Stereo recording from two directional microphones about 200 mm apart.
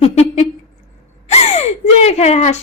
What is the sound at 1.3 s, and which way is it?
Gasp, 30° left (ahead or behind).